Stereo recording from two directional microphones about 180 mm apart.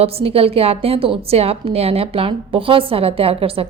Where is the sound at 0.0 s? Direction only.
35° right (ahead or behind).